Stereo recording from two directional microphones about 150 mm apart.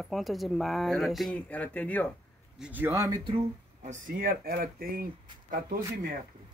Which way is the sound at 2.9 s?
25° right (ahead or behind).